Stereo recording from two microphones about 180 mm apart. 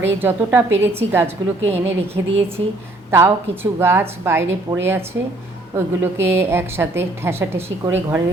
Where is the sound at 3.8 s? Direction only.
15° right (ahead or behind).